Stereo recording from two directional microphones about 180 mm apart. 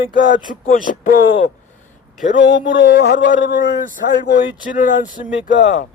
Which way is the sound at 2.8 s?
55° left (ahead or behind).